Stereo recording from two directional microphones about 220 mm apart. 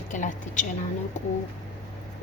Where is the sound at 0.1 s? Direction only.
35° left (ahead or behind).